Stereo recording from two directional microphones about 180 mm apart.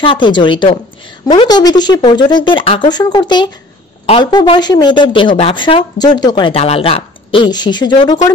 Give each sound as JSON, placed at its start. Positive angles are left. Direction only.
{"t": 0.0, "sound": "a woman's voice", "side_deg": 30}